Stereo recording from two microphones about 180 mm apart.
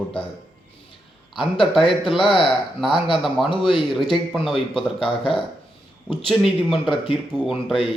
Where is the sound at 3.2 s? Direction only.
Centre (ahead or behind).